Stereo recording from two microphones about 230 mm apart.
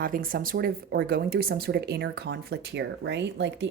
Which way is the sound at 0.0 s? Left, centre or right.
Right.